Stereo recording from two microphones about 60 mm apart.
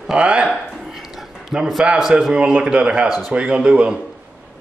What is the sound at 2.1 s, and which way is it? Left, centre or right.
Speech, centre.